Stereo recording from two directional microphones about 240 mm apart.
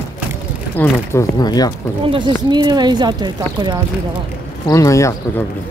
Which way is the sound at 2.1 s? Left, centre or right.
Centre.